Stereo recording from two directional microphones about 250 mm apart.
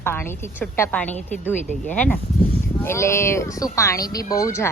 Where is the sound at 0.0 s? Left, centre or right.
Centre.